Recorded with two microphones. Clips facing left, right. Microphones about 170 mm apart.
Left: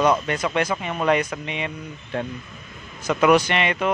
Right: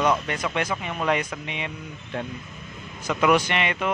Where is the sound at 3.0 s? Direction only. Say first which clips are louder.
Left 4 dB; 40° left (ahead or behind).